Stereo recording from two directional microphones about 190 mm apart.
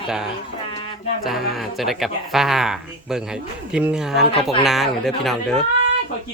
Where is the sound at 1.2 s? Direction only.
Centre (ahead or behind).